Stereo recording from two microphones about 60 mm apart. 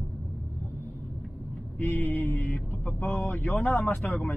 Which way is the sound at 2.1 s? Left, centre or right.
Left.